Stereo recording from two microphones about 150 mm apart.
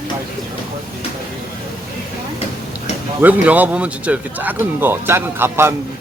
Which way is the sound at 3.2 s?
10° right (ahead or behind).